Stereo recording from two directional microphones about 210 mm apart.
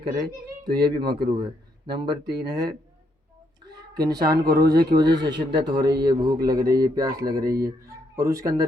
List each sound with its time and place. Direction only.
0.0 s speech: 20° right (ahead or behind)
2.5 s a sound: 20° right (ahead or behind)
3.7 s speech: 20° right (ahead or behind)
4.6 s speech: 50° right (ahead or behind)
4.9 s speech: 20° right (ahead or behind)
6.8 s a sound: 15° right (ahead or behind)